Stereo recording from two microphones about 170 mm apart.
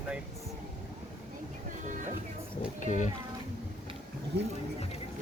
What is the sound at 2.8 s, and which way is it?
Speech, 45° left (ahead or behind).